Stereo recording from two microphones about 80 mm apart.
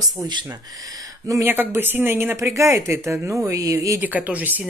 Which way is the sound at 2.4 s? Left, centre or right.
Right.